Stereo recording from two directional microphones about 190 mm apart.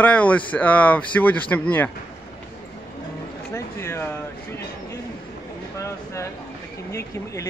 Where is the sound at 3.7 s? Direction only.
10° left (ahead or behind).